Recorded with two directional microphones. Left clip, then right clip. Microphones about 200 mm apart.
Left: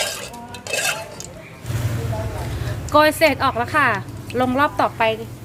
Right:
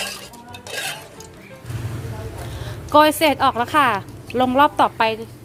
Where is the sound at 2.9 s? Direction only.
25° right (ahead or behind).